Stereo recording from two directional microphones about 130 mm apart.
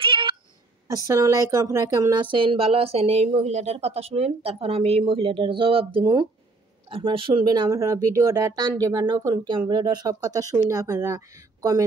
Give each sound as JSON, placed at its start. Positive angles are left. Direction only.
{"t": 0.0, "sound": "cat", "side_deg": -40}
{"t": 1.0, "sound": "speech", "side_deg": -25}
{"t": 2.1, "sound": "a woman's voice", "side_deg": -40}